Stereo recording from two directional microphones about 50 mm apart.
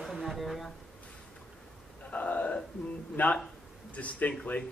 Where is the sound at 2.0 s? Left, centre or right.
Left.